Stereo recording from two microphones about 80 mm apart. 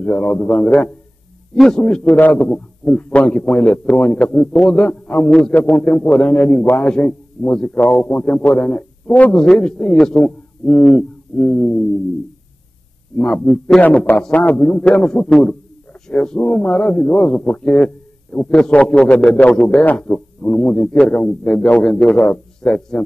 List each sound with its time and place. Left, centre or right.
0.0 s a man's voice: centre
13.1 s a man's voice: centre